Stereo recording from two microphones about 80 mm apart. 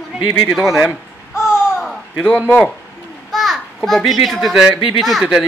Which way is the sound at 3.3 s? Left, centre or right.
Centre.